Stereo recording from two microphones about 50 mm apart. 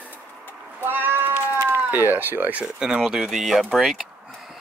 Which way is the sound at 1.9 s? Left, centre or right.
Right.